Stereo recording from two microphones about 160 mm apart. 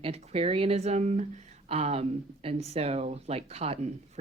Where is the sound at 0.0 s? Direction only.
40° right (ahead or behind).